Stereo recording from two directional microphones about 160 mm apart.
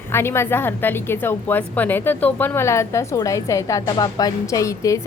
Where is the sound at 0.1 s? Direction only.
15° left (ahead or behind).